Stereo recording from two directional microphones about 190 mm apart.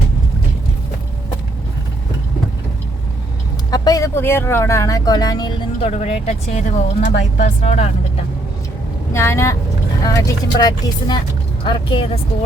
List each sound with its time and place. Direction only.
3.7 s speech: 20° left (ahead or behind); by 8.2 s 35° left (ahead or behind)
9.1 s speech: 15° left (ahead or behind)